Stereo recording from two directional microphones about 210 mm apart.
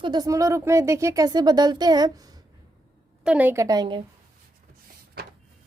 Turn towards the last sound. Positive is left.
turn(degrees=-20)  # may be behind; listen again after turning